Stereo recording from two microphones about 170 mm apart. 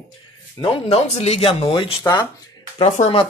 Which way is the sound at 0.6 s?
35° left (ahead or behind).